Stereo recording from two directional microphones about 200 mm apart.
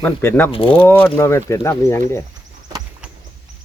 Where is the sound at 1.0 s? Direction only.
15° left (ahead or behind).